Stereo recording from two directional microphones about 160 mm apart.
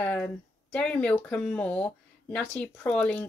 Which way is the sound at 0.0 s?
10° left (ahead or behind).